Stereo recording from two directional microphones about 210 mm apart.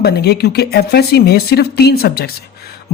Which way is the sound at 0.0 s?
50° left (ahead or behind).